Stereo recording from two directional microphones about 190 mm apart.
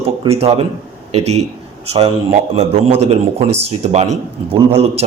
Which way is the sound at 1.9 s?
35° right (ahead or behind).